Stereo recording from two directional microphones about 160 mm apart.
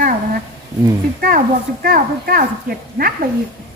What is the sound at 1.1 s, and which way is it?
Speech, 65° right (ahead or behind).